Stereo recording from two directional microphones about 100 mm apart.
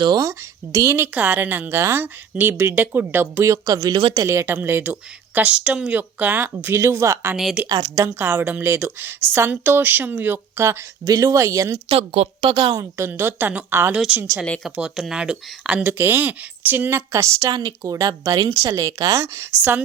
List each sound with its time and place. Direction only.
0.0 s a woman's voice: 40° right (ahead or behind)
3.9 s a woman's voice: 45° right (ahead or behind)
4.3 s a woman's voice: 25° right (ahead or behind)
7.7 s a woman's voice: 50° right (ahead or behind)
7.9 s a woman's voice: 25° right (ahead or behind)
11.9 s a woman's voice: 80° right
12.5 s a woman's voice: 50° right (ahead or behind)
12.7 s speech: 30° right (ahead or behind)
13.1 s a woman's voice: 20° right (ahead or behind)
13.9 s speech: 10° right (ahead or behind)
14.2 s a woman's voice: 25° right (ahead or behind)
14.6 s speech: 5° right (ahead or behind); by 17.5 s 30° right (ahead or behind)
17.5 s a woman's voice: 45° right (ahead or behind)
17.8 s speech: 35° right (ahead or behind)